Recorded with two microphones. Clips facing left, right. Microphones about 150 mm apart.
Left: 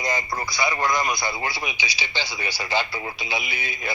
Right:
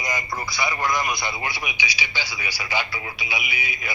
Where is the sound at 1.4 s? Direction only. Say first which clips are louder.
Even; 15° right (ahead or behind).